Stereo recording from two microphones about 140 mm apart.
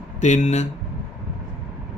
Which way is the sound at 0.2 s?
55° left (ahead or behind).